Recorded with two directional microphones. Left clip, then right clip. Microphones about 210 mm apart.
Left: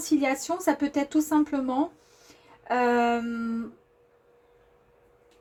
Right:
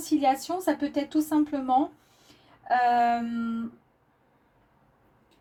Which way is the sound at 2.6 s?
35° left (ahead or behind).